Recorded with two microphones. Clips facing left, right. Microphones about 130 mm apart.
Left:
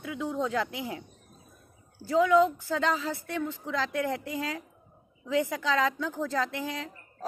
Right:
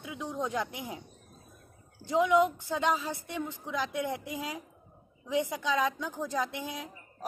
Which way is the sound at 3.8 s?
90° left.